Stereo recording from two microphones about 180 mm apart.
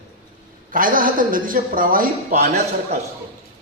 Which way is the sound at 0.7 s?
50° right (ahead or behind).